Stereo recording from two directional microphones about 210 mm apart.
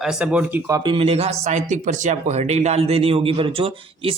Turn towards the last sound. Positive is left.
turn(degrees=-25)  # may be behind; listen again after turning